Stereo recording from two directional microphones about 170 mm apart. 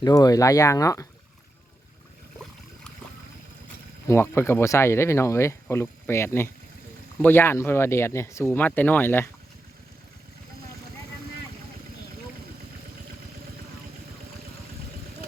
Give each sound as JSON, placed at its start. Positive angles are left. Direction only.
{"t": 0.0, "sound": "speech", "side_deg": 20}
{"t": 4.1, "sound": "speech", "side_deg": 15}